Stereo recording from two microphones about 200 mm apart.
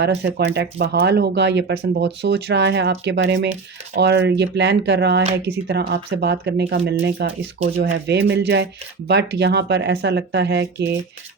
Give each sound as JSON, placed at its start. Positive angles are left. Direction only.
{"t": 0.0, "sound": "speech", "side_deg": -60}